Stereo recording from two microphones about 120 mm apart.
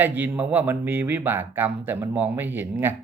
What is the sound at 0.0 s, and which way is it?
Speech, 15° right (ahead or behind).